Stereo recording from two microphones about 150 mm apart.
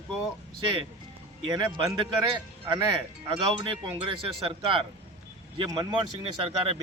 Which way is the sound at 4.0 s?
35° right (ahead or behind).